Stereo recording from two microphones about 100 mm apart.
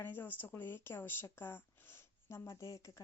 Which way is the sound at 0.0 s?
20° left (ahead or behind).